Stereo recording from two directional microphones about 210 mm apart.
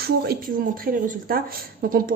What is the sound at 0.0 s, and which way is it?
Speech, 45° right (ahead or behind).